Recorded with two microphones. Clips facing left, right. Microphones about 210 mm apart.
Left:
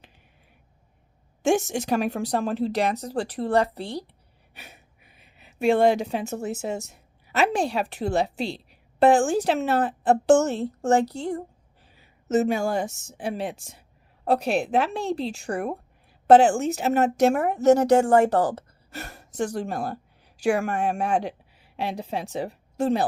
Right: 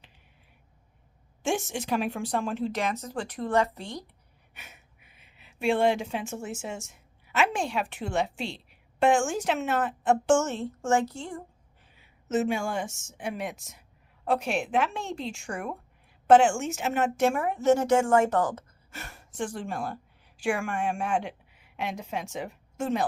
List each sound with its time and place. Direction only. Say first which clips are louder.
1.4 s a woman's voice: left 7 dB; 45° left (ahead or behind)